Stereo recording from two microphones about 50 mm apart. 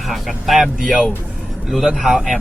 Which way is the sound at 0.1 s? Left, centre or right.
Centre.